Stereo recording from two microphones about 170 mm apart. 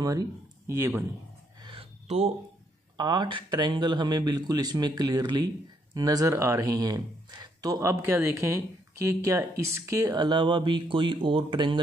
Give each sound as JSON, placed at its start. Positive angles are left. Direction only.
{"t": 0.0, "sound": "speech", "side_deg": -20}
{"t": 1.6, "sound": "a sound", "side_deg": -30}
{"t": 3.0, "sound": "speech", "side_deg": -25}